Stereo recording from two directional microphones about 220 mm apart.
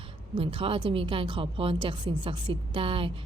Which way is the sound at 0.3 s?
25° right (ahead or behind).